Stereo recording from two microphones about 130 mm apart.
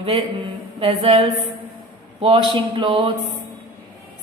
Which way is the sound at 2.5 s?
35° right (ahead or behind).